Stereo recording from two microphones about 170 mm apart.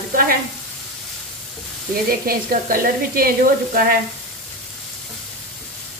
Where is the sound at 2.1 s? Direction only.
60° right (ahead or behind).